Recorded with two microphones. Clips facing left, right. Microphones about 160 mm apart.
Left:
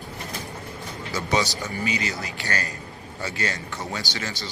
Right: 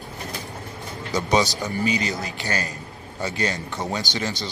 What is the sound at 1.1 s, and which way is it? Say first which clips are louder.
Speech: right 4 dB; 15° right (ahead or behind).